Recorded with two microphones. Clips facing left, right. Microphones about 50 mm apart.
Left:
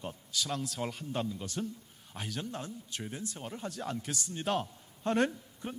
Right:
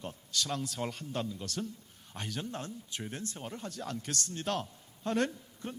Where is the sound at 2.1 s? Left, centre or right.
Centre.